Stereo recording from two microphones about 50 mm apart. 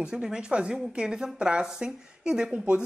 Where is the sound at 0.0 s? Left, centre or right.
Centre.